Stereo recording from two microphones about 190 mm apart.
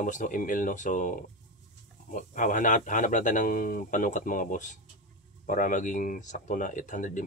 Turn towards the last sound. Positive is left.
turn(degrees=40)  # may be behind; listen again after turning